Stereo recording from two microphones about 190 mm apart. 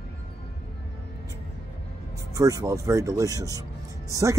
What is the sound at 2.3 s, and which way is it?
Speech, 15° right (ahead or behind).